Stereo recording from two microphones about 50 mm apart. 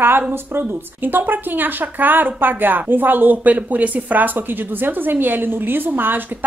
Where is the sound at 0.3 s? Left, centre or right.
Right.